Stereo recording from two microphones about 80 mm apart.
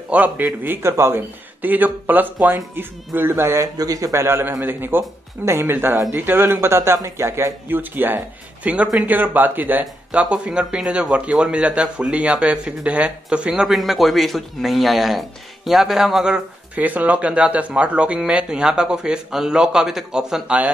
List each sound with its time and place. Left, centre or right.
0.1 s speech: centre
0.8 s speech: right
3.6 s speech: right; by 16.3 s centre
16.7 s speech: right